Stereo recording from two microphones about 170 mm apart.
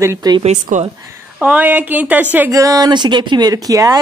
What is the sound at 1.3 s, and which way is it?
Speech, 10° right (ahead or behind).